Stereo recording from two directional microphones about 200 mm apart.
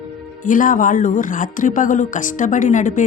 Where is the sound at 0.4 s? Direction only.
40° left (ahead or behind).